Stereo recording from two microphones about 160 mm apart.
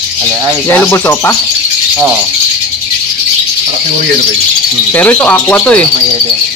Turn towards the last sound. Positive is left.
turn(degrees=10)  # may be behind; listen again after turning